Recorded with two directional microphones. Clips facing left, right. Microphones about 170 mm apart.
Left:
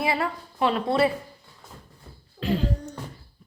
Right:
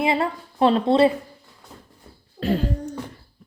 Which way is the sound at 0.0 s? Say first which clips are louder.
Right 4 dB; 25° right (ahead or behind).